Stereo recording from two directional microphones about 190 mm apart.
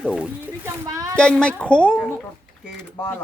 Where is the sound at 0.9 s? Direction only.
15° right (ahead or behind).